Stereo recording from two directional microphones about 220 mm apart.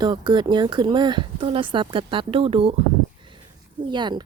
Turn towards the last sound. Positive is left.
turn(degrees=-20)  # may be behind; listen again after turning